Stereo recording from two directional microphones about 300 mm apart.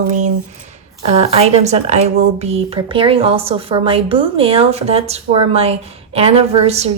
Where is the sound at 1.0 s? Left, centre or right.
Centre.